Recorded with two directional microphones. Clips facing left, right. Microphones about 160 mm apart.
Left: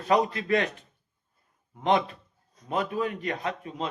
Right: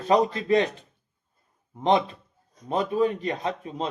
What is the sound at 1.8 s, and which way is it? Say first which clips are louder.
Speech: right 2 dB; 25° right (ahead or behind).